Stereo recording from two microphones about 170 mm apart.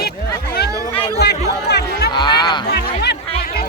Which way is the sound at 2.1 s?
25° left (ahead or behind).